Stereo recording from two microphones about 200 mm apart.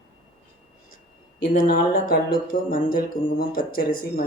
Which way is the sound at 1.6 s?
45° left (ahead or behind).